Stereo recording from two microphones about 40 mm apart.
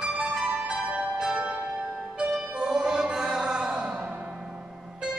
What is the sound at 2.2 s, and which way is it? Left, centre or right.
Music, centre.